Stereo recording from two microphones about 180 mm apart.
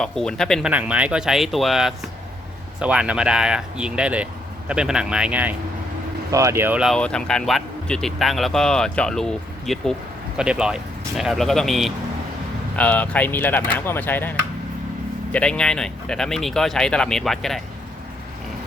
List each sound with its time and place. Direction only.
0.0 s speech: 5° left (ahead or behind)